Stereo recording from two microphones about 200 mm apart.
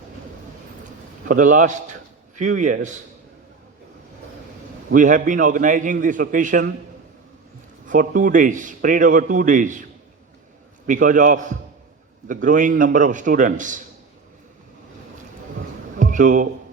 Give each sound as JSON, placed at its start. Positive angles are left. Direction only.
{"t": 1.3, "sound": "a man's voice", "side_deg": -40}
{"t": 4.9, "sound": "a man's voice", "side_deg": -40}
{"t": 7.9, "sound": "a man's voice", "side_deg": -40}
{"t": 10.8, "sound": "a man's voice", "side_deg": -40}
{"t": 16.0, "sound": "a sound", "side_deg": -40}